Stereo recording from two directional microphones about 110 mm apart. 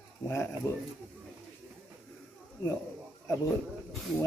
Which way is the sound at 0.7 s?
30° left (ahead or behind).